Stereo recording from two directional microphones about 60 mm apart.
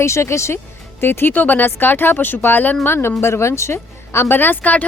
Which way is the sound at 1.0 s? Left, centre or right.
Left.